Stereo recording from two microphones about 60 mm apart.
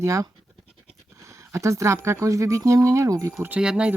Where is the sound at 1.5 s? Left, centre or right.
Right.